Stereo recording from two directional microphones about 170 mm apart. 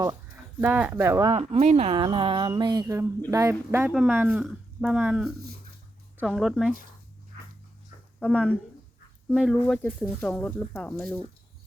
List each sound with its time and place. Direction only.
0.6 s speech: 10° right (ahead or behind)
1.3 s speech: 35° right (ahead or behind); by 5.2 s 10° right (ahead or behind)
6.2 s speech: centre (ahead or behind)
8.2 s speech: 5° left (ahead or behind)
9.6 s speech: 10° left (ahead or behind)